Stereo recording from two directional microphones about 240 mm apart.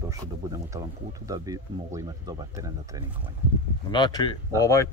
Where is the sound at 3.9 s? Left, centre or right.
Centre.